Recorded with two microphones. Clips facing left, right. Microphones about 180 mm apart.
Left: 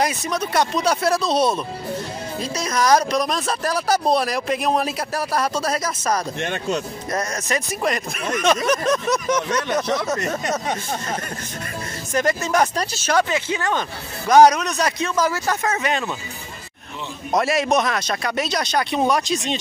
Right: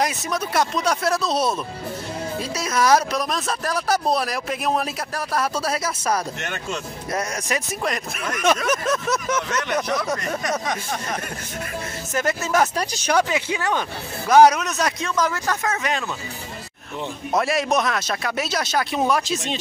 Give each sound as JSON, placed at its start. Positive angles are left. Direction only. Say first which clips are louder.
{"t": 0.0, "sound": "speech", "louder": "left 2 dB", "side_deg": -5}
{"t": 6.4, "sound": "speech", "louder": "left 5 dB", "side_deg": 35}
{"t": 7.1, "sound": "speech", "louder": "even", "side_deg": -10}
{"t": 8.6, "sound": "speech", "louder": "left 3 dB", "side_deg": -5}
{"t": 10.1, "sound": "speech", "louder": "left 2 dB", "side_deg": 25}
{"t": 12.1, "sound": "speech", "louder": "left 2 dB", "side_deg": -5}
{"t": 17.4, "sound": "speech", "louder": "left 2 dB", "side_deg": 0}